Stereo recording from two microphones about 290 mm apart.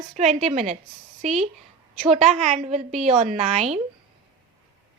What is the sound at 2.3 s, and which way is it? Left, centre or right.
Speech, right.